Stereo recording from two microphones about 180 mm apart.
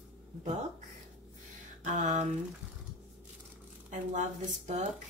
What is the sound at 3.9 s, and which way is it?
Speech, 40° right (ahead or behind).